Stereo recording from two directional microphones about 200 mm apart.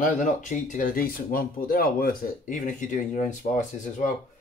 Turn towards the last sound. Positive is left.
turn(degrees=40)  # may be behind; listen again after turning